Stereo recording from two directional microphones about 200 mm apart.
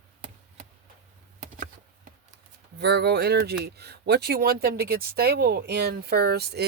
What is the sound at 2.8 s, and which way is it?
Speech, 55° right (ahead or behind).